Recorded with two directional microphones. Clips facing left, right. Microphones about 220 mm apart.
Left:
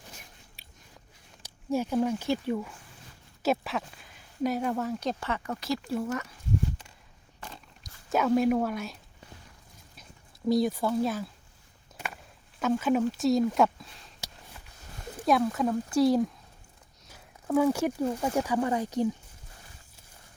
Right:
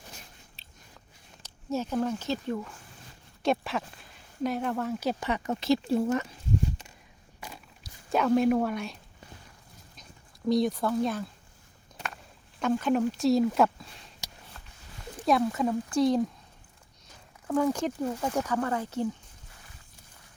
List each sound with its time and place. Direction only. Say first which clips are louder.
0.6 s biting: left 1 dB; 10° left (ahead or behind)
1.4 s speech: left 2 dB; 10° left (ahead or behind)
5.2 s speech: right 4 dB; 20° right (ahead or behind)
8.1 s speech: right 1 dB; centre (ahead or behind)
10.5 s speech: even; 5° left (ahead or behind)
14.5 s a sound: even; 10° left (ahead or behind)
15.3 s speech: even; centre (ahead or behind)